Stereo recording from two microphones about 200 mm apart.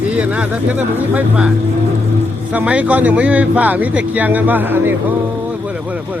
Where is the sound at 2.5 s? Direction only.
5° right (ahead or behind).